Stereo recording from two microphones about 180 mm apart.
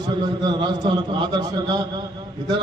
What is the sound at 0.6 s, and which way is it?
A man's voice, 25° right (ahead or behind).